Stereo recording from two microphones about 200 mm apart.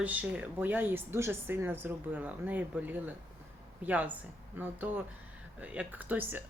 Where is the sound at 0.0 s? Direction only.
5° right (ahead or behind).